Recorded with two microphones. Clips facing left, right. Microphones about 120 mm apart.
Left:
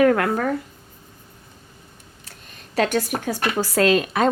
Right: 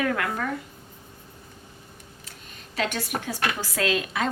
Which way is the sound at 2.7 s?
45° left (ahead or behind).